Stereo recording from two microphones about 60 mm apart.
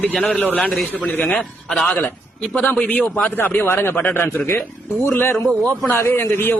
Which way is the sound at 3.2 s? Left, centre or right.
Left.